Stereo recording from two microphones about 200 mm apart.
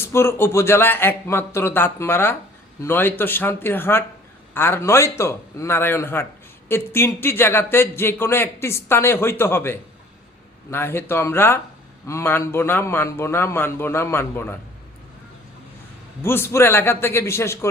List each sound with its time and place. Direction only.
0.0 s speech: 10° left (ahead or behind)
16.2 s speech: 10° left (ahead or behind)